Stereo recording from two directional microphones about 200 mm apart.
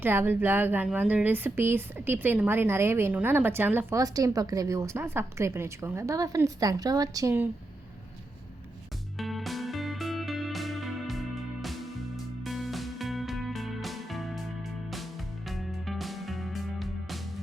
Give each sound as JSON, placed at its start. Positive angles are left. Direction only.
{"t": 0.0, "sound": "speech", "side_deg": -10}
{"t": 9.1, "sound": "music", "side_deg": 0}
{"t": 15.4, "sound": "music", "side_deg": 0}